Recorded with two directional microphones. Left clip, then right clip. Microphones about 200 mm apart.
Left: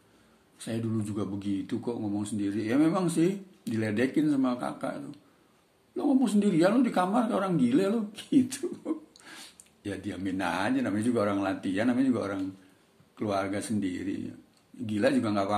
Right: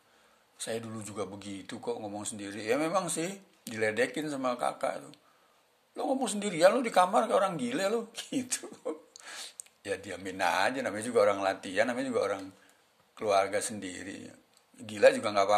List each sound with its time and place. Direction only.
0.6 s speech: 35° right (ahead or behind)